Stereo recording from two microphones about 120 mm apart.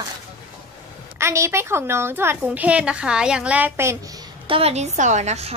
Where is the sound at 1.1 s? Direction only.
25° right (ahead or behind).